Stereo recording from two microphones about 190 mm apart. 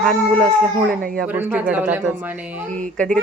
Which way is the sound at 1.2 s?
10° right (ahead or behind).